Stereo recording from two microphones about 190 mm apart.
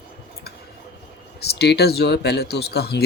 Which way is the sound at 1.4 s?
60° left (ahead or behind).